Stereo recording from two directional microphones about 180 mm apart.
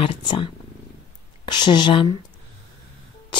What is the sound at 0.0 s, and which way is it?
Speech, 30° left (ahead or behind).